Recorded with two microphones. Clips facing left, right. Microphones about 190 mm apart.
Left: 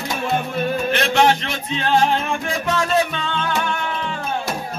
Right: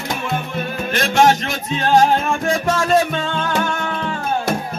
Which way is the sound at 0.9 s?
45° right (ahead or behind).